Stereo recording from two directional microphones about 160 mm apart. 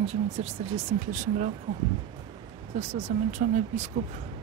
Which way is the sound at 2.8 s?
40° right (ahead or behind).